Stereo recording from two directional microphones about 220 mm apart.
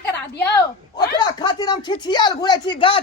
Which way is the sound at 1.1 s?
20° left (ahead or behind).